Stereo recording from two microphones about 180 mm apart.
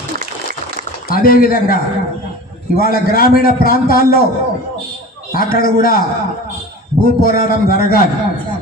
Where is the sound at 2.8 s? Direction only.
55° left (ahead or behind).